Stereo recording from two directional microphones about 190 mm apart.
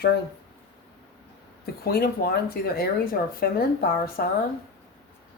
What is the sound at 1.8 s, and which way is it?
Speech, 55° left (ahead or behind).